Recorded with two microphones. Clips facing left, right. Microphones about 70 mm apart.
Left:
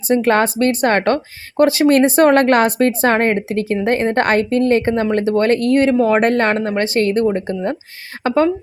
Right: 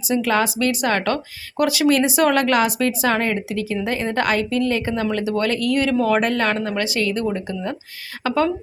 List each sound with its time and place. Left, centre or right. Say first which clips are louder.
0.1 s a woman's voice: left 5 dB; left
6.2 s speech: left 5 dB; left